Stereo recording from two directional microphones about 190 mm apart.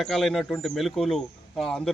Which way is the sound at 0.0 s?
Centre (ahead or behind).